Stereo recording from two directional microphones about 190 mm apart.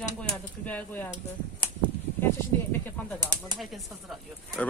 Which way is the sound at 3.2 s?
20° right (ahead or behind).